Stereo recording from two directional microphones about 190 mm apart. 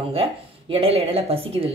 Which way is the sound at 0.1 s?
30° right (ahead or behind).